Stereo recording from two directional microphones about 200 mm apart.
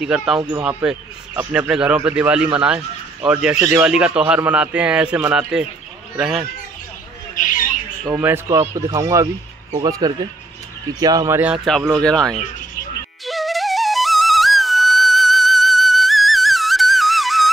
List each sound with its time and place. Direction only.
0.0 s speech: 5° right (ahead or behind)
7.3 s bird: 40° left (ahead or behind)
8.0 s speech: 10° right (ahead or behind)
13.2 s flute: centre (ahead or behind)